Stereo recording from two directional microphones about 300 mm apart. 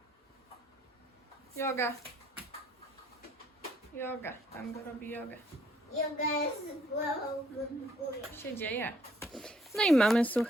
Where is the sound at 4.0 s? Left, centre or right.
Centre.